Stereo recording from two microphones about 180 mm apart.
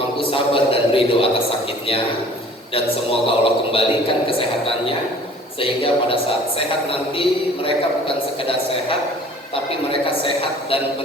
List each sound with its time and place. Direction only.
0.2 s a man's voice: 30° left (ahead or behind)
2.7 s a man's voice: 30° left (ahead or behind)
7.2 s a man's voice: 30° left (ahead or behind)